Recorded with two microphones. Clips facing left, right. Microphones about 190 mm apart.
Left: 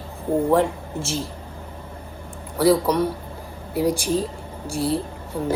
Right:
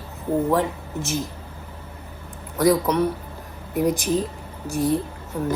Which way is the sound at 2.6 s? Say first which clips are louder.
Left 1 dB; 10° left (ahead or behind).